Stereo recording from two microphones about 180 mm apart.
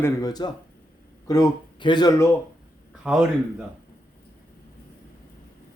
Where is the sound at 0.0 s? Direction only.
20° left (ahead or behind).